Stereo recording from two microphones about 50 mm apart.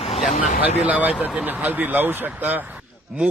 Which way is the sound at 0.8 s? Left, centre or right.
Right.